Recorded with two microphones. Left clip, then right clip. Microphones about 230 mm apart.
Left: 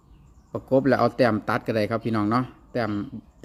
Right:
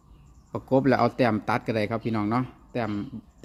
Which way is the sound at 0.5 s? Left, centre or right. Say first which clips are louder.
Left 2 dB; centre.